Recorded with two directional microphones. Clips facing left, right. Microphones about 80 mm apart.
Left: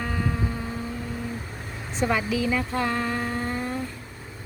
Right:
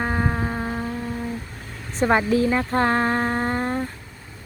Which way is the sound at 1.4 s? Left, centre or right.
Centre.